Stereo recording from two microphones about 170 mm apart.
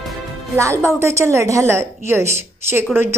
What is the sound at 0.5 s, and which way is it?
A woman's voice, 15° right (ahead or behind).